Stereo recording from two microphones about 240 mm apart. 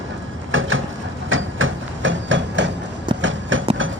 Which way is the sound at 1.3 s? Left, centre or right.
Right.